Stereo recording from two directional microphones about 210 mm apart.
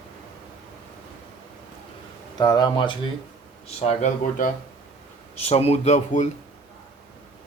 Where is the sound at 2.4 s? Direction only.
20° left (ahead or behind).